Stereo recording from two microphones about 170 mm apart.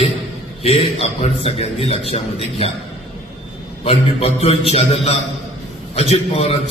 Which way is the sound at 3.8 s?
35° left (ahead or behind).